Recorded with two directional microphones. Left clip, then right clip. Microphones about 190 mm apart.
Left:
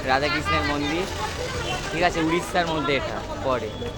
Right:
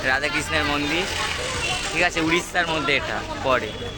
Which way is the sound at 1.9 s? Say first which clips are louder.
Right 1 dB; 10° left (ahead or behind).